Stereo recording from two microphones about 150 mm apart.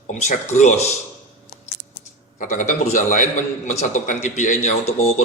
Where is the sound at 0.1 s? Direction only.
55° left (ahead or behind).